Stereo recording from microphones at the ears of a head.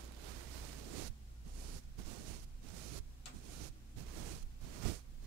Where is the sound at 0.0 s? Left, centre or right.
Right.